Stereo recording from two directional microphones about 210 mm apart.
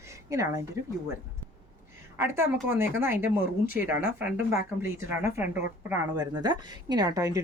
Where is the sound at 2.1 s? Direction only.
10° right (ahead or behind).